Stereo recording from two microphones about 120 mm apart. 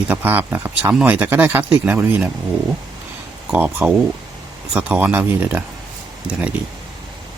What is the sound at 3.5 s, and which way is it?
Speech, 10° right (ahead or behind).